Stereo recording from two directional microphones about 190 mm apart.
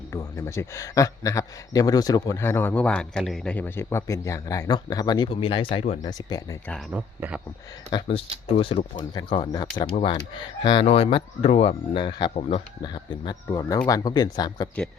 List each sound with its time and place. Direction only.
0.1 s a man's voice: 15° left (ahead or behind)
6.9 s speech: 5° right (ahead or behind)
7.9 s speech: 25° left (ahead or behind)